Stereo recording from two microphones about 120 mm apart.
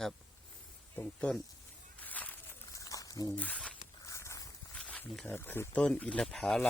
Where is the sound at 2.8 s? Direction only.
30° left (ahead or behind).